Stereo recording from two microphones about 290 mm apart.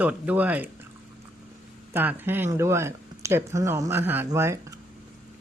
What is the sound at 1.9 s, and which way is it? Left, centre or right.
Speech, centre.